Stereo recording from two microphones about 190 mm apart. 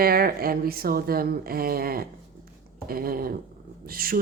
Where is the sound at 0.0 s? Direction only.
50° right (ahead or behind).